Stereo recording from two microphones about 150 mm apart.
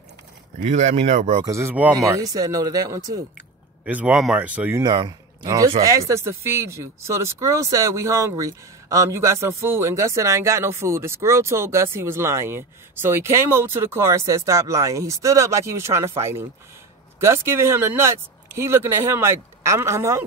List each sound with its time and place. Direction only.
0.6 s speech: 50° right (ahead or behind)
1.4 s speech: 20° right (ahead or behind)
3.8 s speech: 10° right (ahead or behind)
4.8 s speech: 30° right (ahead or behind)